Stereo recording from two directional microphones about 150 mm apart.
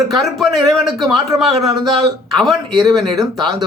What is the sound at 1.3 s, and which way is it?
Speech, 20° right (ahead or behind).